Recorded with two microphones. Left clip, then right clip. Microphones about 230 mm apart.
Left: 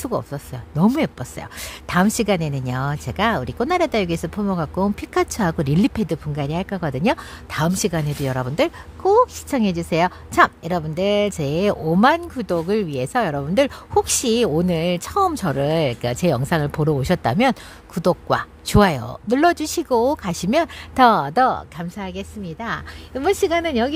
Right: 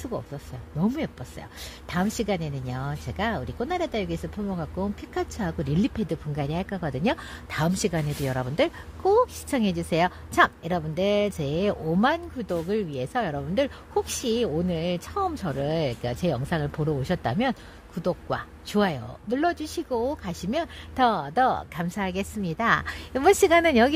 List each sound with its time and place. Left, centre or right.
0.0 s speech: left
21.8 s a woman's voice: centre